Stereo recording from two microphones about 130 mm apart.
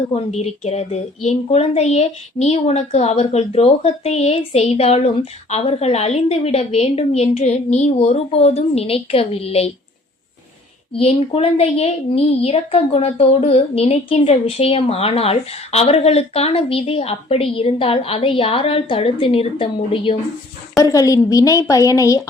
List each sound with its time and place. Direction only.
0.1 s speech: 55° left (ahead or behind)
10.9 s a woman's voice: 50° left (ahead or behind)
20.7 s a woman's voice: 25° left (ahead or behind)